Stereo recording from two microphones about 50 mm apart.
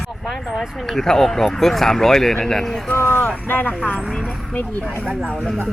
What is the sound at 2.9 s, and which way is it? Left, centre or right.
Speech, left.